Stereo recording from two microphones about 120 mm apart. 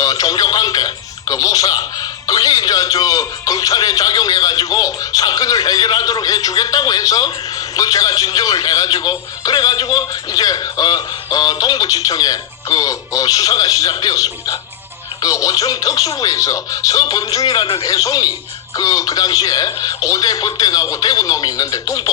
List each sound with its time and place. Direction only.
0.0 s music: 30° left (ahead or behind)
2.2 s a man's voice: 30° left (ahead or behind)